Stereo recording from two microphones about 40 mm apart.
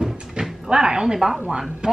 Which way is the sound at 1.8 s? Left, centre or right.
Right.